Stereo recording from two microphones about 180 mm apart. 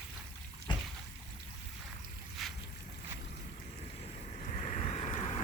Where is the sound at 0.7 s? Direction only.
25° left (ahead or behind).